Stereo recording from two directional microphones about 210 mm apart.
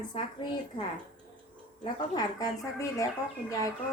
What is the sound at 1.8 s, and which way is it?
A woman's voice, 20° left (ahead or behind).